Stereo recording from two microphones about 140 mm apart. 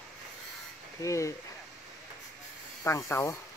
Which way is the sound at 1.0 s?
20° left (ahead or behind).